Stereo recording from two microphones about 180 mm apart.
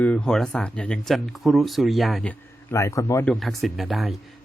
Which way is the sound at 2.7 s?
15° left (ahead or behind).